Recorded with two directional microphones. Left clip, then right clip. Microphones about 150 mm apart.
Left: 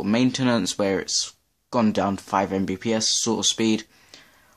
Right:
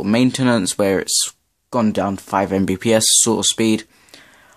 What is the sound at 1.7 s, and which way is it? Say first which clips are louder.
Speech: right 3 dB; 15° right (ahead or behind).